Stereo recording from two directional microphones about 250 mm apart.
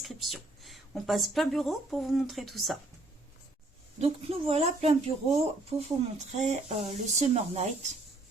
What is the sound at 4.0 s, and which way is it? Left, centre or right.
Speech, right.